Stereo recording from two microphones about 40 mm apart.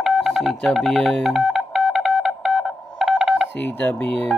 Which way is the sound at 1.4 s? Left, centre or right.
Centre.